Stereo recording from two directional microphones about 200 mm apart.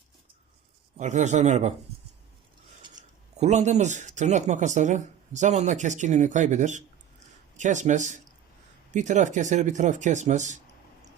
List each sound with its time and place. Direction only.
0.9 s speech: 35° right (ahead or behind)
3.3 s speech: 35° right (ahead or behind)